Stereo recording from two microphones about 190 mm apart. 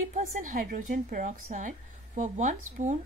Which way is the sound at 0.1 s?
45° right (ahead or behind).